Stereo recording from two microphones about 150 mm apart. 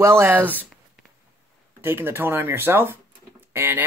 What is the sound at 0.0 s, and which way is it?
Speech, 15° right (ahead or behind).